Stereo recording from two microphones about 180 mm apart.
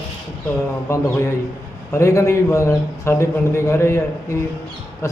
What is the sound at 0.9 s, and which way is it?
A man's voice, 15° left (ahead or behind).